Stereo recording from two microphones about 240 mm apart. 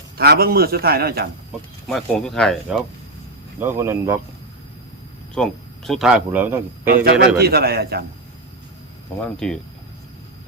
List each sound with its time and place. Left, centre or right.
0.2 s a man's voice: right
1.9 s speech: centre
3.6 s speech: centre
5.3 s speech: centre
6.8 s a man's voice: right
9.2 s speech: centre